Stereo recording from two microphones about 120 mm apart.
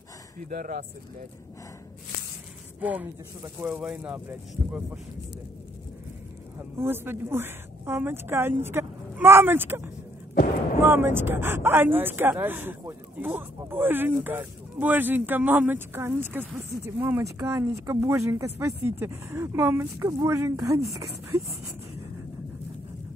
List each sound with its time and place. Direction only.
2.8 s speech: 15° right (ahead or behind)
6.6 s a woman's voice: 20° right (ahead or behind)